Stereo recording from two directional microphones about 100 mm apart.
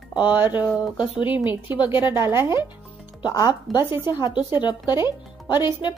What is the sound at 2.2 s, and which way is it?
Speech, 25° right (ahead or behind).